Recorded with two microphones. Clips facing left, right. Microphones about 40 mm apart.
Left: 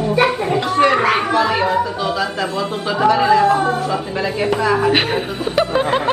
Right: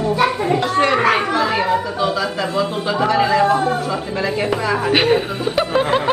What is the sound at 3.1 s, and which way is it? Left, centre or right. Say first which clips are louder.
A woman's voice: left 3 dB; centre.